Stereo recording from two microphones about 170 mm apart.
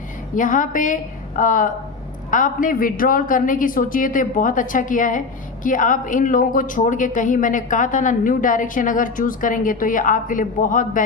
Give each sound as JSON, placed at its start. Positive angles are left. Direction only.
{"t": 0.3, "sound": "speech", "side_deg": 50}